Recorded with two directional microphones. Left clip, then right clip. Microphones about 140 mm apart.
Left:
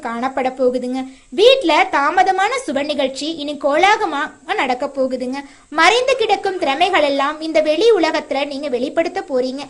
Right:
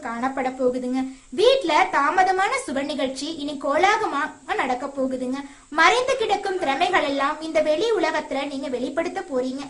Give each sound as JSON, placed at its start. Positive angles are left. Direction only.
{"t": 0.1, "sound": "a woman's voice", "side_deg": 35}